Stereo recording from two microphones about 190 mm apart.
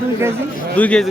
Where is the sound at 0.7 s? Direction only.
5° left (ahead or behind).